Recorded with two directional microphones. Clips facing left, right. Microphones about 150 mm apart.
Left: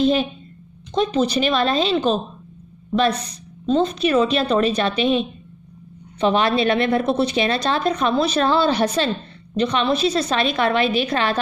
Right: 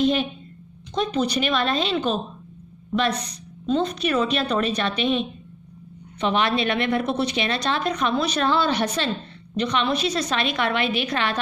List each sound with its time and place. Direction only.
0.0 s a woman's voice: 35° left (ahead or behind)